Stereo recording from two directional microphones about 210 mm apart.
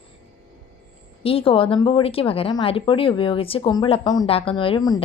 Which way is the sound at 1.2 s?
25° left (ahead or behind).